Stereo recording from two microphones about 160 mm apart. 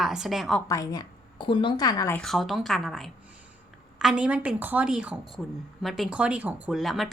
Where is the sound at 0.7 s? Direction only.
20° left (ahead or behind).